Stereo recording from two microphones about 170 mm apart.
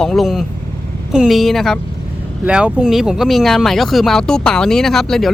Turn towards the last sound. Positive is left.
turn(degrees=0)  # may be behind; listen again after turning